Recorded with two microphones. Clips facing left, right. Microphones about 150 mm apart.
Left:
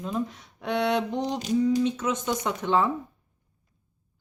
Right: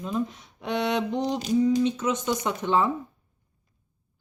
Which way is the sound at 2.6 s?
15° right (ahead or behind).